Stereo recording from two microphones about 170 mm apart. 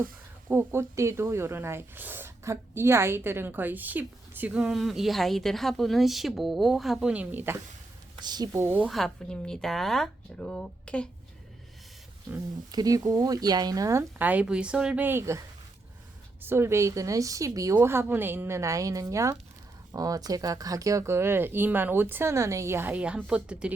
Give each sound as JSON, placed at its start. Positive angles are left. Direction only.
{"t": 0.4, "sound": "speech", "side_deg": -15}
{"t": 8.2, "sound": "speech", "side_deg": -25}
{"t": 8.9, "sound": "speech", "side_deg": 0}
{"t": 12.7, "sound": "speech", "side_deg": -20}